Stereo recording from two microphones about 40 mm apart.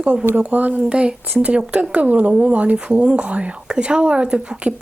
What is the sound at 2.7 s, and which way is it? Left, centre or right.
Speech, right.